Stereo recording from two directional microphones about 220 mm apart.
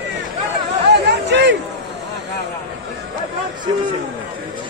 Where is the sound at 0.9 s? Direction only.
50° right (ahead or behind).